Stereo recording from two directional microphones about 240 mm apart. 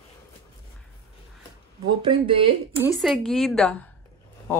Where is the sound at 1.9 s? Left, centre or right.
Centre.